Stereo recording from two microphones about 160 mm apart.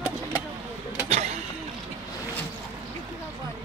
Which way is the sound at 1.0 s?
40° right (ahead or behind).